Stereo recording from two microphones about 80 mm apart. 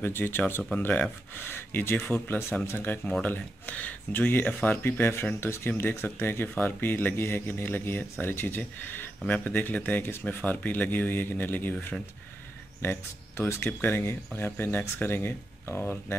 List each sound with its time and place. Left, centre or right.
0.0 s speech: left